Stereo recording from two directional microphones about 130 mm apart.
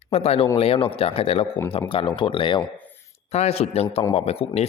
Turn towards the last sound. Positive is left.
turn(degrees=50)  # may be behind; listen again after turning